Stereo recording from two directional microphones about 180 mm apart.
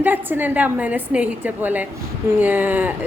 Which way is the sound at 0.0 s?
10° right (ahead or behind).